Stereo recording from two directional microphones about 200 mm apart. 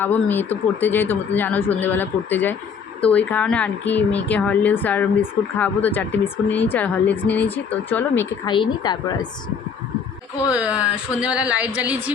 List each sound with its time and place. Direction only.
0.0 s speech: 10° left (ahead or behind)
8.4 s a woman's voice: 25° left (ahead or behind)
10.5 s a woman's voice: 5° right (ahead or behind)